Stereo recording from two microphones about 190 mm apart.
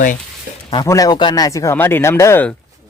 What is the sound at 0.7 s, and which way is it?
Speech, 20° left (ahead or behind).